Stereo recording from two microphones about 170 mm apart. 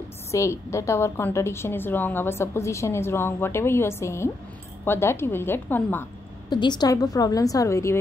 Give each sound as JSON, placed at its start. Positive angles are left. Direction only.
{"t": 0.3, "sound": "a woman's voice", "side_deg": 15}
{"t": 6.5, "sound": "a woman's voice", "side_deg": 25}